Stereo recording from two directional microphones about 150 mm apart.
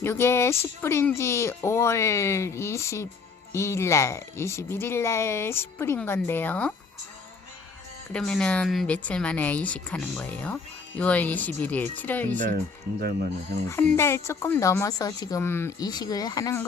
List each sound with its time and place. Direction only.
0.0 s a woman's voice: 15° left (ahead or behind)
8.1 s speech: 5° left (ahead or behind)
13.9 s a woman's voice: 15° left (ahead or behind)
15.9 s a woman's voice: 25° left (ahead or behind)